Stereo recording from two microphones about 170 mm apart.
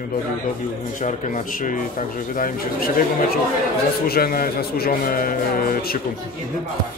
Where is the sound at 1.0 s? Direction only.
45° left (ahead or behind).